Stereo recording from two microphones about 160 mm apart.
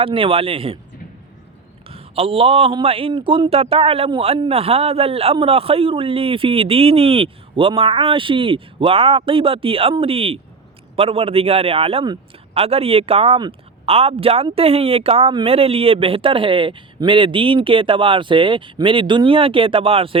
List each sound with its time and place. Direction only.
0.0 s a man's voice: 35° right (ahead or behind)
1.9 s a man's voice: 35° right (ahead or behind)